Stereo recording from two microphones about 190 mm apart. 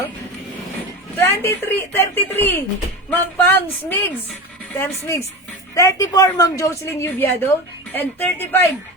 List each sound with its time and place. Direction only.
1.2 s a woman's voice: 15° left (ahead or behind)